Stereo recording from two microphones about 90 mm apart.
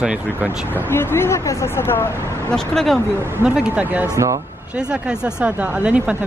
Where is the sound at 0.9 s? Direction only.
25° left (ahead or behind).